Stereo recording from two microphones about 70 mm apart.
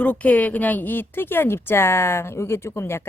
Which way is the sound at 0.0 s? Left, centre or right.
Left.